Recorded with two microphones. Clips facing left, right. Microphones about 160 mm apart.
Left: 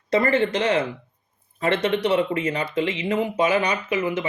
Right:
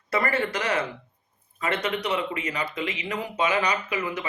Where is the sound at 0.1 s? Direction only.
30° left (ahead or behind).